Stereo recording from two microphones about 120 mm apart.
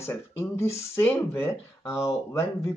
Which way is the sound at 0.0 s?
20° left (ahead or behind).